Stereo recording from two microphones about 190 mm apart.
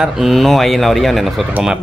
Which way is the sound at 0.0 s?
Centre (ahead or behind).